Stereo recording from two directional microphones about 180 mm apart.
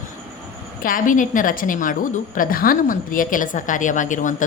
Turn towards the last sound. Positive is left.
turn(degrees=45)  # may be behind; listen again after turning